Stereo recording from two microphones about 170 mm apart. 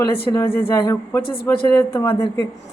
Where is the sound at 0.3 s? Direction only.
15° left (ahead or behind).